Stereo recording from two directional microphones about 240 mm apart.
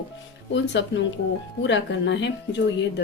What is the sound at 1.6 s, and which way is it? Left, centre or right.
Speech, left.